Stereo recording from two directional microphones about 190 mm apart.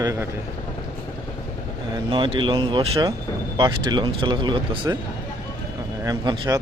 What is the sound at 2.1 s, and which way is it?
Speech, 25° right (ahead or behind).